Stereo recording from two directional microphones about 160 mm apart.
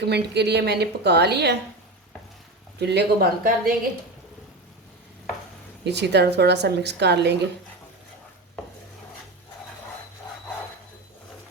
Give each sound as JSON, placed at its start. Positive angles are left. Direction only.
{"t": 0.0, "sound": "a woman's voice", "side_deg": -90}
{"t": 2.7, "sound": "speech", "side_deg": -90}
{"t": 5.8, "sound": "a woman's voice", "side_deg": -90}